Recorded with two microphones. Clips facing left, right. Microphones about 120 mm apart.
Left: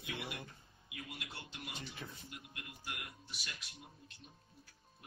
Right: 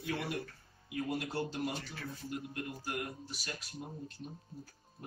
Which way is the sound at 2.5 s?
40° right (ahead or behind).